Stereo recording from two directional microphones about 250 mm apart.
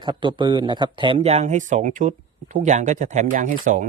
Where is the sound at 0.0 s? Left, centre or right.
Centre.